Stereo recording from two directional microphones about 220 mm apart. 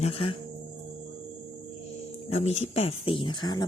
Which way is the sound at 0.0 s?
25° left (ahead or behind).